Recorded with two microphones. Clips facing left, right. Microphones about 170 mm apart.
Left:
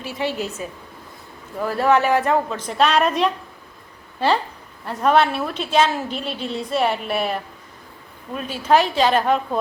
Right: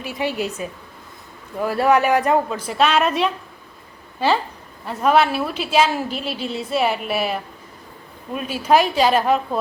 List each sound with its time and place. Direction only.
0.0 s a woman's voice: 15° right (ahead or behind)
1.6 s a woman's voice: 10° right (ahead or behind)
4.9 s a woman's voice: 5° right (ahead or behind)